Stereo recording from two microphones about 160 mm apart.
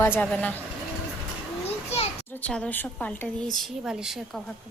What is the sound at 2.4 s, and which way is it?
Speech, 5° left (ahead or behind).